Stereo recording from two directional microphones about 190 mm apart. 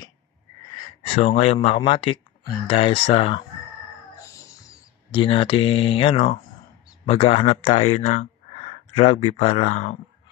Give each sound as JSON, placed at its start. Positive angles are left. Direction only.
{"t": 1.0, "sound": "speech", "side_deg": 30}
{"t": 4.3, "sound": "a sound", "side_deg": 15}
{"t": 7.1, "sound": "speech", "side_deg": 30}